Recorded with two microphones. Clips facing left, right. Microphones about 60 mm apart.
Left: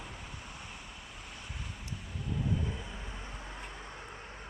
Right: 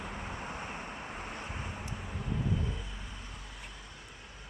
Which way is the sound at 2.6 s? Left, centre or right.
Left.